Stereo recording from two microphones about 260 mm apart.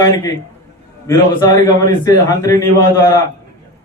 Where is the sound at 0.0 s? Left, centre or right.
Centre.